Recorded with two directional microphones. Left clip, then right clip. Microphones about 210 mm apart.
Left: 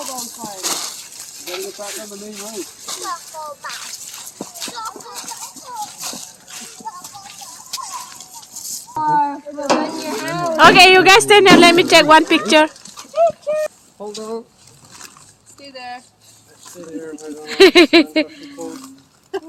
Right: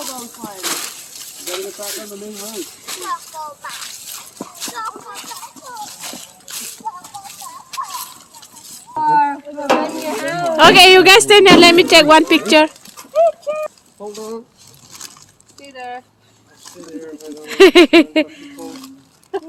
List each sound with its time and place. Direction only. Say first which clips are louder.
0.6 s a sound: even; 15° right (ahead or behind)
5.6 s a sound: left 3 dB; 5° right (ahead or behind)
8.9 s a sound: right 3 dB; 5° right (ahead or behind)
9.6 s speech: right 2 dB; 10° right (ahead or behind)
10.0 s speech: right 2 dB; centre (ahead or behind)
10.4 s a woman's voice: right 1 dB; 20° right (ahead or behind)
13.1 s clip-clop: right 1 dB; 20° right (ahead or behind)
14.0 s speech: even; 40° left (ahead or behind)
15.7 s dog: right 2 dB; 65° left (ahead or behind)
17.4 s speech: right 1 dB; 5° right (ahead or behind)